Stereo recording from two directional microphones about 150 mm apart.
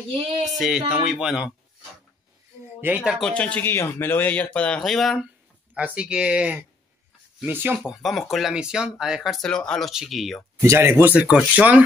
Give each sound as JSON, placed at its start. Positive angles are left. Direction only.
{"t": 0.1, "sound": "speech", "side_deg": -35}
{"t": 0.4, "sound": "speech", "side_deg": 0}
{"t": 2.8, "sound": "speech", "side_deg": -10}
{"t": 10.6, "sound": "speech", "side_deg": -15}